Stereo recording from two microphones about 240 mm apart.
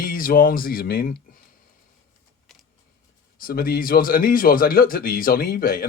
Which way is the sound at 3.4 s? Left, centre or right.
Left.